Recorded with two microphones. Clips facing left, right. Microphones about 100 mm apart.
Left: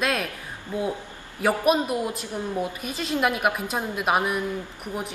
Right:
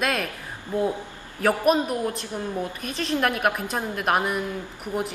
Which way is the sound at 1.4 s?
5° left (ahead or behind).